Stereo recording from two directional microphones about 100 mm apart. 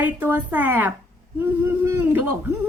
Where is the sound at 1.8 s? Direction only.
30° right (ahead or behind).